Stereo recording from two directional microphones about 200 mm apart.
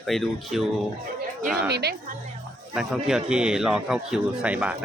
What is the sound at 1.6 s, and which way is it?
Speech, 55° right (ahead or behind).